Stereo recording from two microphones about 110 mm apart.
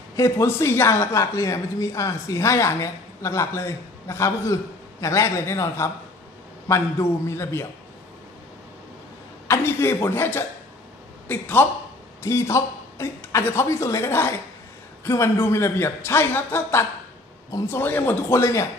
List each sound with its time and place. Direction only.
0.1 s a woman's voice: 30° left (ahead or behind)
9.5 s a woman's voice: 25° left (ahead or behind)